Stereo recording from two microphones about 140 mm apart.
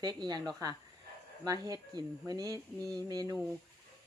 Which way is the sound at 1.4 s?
25° right (ahead or behind).